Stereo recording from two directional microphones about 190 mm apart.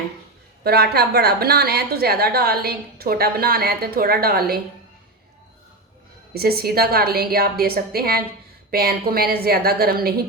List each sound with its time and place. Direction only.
0.6 s a woman's voice: 55° right (ahead or behind)
6.3 s a woman's voice: 55° right (ahead or behind)